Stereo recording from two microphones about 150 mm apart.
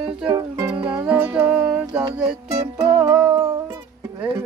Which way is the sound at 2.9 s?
25° right (ahead or behind).